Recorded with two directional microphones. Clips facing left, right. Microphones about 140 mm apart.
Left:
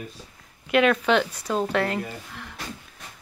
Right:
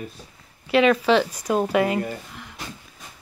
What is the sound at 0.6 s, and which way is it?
Speech, centre (ahead or behind).